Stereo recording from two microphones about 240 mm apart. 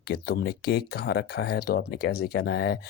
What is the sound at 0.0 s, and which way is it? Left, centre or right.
Speech, left.